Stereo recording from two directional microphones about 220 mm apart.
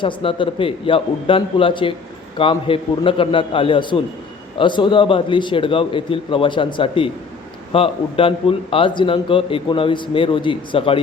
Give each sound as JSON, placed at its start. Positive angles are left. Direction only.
{"t": 0.0, "sound": "a man's voice", "side_deg": 25}